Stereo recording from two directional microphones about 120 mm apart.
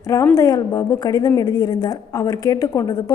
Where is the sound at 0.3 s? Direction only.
30° left (ahead or behind).